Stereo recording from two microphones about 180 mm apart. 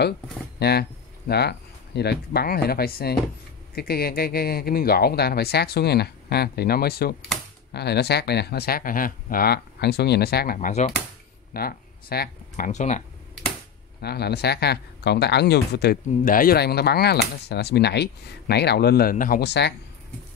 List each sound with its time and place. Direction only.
0.6 s speech: 65° left (ahead or behind); by 13.0 s 40° left (ahead or behind)
14.0 s speech: 65° left (ahead or behind)